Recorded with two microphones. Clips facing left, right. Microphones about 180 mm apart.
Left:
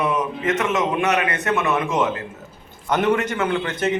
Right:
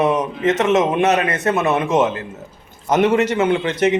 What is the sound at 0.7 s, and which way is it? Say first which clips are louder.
A man's voice: right 5 dB; 25° right (ahead or behind).